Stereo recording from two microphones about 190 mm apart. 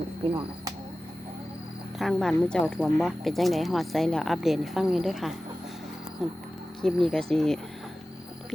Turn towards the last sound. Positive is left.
turn(degrees=0)  # may be behind; listen again after turning